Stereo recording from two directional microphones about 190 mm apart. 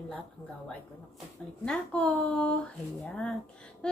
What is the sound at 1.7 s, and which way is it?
A woman's voice, 5° left (ahead or behind).